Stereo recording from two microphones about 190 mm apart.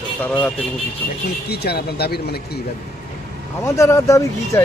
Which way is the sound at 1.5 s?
55° left (ahead or behind).